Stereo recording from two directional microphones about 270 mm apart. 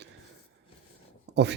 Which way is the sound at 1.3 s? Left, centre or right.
Right.